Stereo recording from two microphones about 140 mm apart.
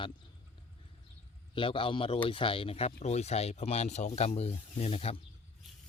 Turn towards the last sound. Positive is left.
turn(degrees=45)  # may be behind; listen again after turning